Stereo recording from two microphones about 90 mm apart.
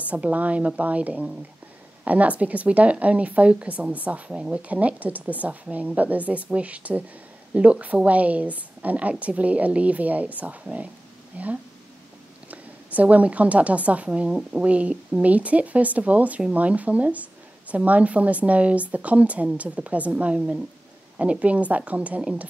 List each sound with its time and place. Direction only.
0.1 s a woman's voice: 15° right (ahead or behind)